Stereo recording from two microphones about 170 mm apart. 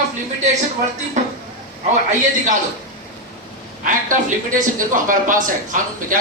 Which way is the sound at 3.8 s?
50° right (ahead or behind).